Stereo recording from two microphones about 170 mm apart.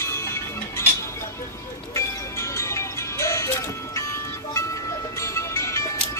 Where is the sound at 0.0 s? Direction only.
15° left (ahead or behind).